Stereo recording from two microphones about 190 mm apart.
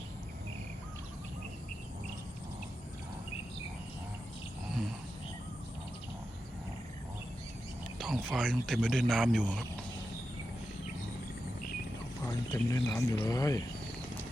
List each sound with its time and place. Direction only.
4.7 s a sound: centre (ahead or behind)
7.9 s speech: centre (ahead or behind)
12.2 s speech: 15° left (ahead or behind)